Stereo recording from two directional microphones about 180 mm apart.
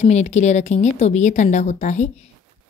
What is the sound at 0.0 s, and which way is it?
Speech, 40° left (ahead or behind).